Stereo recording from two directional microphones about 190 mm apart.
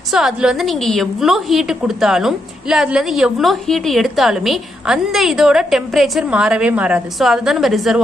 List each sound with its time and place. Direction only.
0.1 s a woman's voice: centre (ahead or behind)